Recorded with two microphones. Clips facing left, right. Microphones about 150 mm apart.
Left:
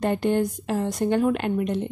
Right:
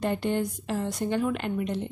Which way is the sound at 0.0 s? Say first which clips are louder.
Left 5 dB; 50° left (ahead or behind).